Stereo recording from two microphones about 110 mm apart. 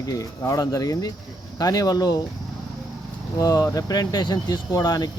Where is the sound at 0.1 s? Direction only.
30° left (ahead or behind).